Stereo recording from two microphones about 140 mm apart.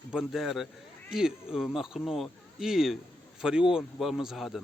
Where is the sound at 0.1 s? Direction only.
5° right (ahead or behind).